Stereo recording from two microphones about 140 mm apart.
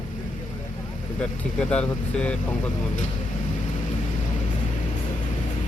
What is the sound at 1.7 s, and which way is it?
Speech, 10° left (ahead or behind).